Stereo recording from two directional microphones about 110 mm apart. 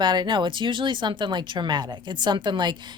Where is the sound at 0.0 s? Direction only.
40° right (ahead or behind).